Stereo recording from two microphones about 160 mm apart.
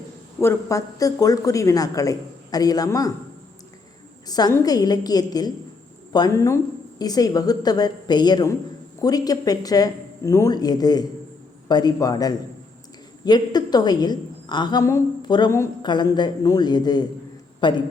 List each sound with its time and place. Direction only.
0.4 s a woman's voice: 20° left (ahead or behind)
4.3 s a woman's voice: 25° left (ahead or behind)